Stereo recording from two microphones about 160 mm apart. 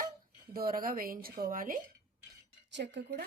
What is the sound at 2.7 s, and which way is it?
Speech, 90° right.